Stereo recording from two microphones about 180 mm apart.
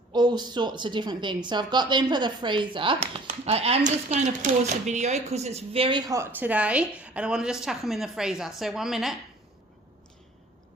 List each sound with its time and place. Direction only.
0.1 s speech: 25° right (ahead or behind); by 9.1 s centre (ahead or behind)